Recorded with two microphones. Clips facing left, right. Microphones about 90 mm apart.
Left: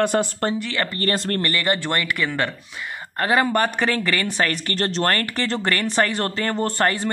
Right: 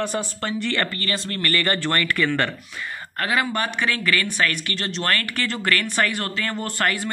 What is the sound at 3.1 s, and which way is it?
Speech, 35° left (ahead or behind).